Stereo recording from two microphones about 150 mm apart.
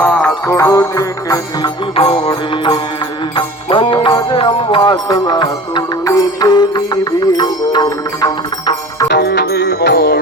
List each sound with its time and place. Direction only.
0.0 s music: 10° left (ahead or behind)
0.5 s music: 20° left (ahead or behind)
2.0 s music: 40° left (ahead or behind)
9.0 s music: 90° left